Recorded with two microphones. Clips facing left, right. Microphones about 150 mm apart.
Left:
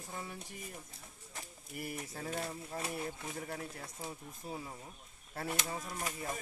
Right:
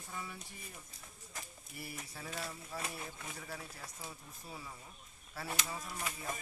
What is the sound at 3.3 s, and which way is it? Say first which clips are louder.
Speech: left 5 dB; 50° left (ahead or behind).